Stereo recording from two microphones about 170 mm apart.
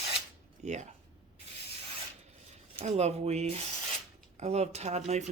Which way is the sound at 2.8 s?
40° right (ahead or behind).